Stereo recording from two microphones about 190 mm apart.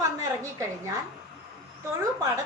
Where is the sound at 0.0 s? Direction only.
15° right (ahead or behind).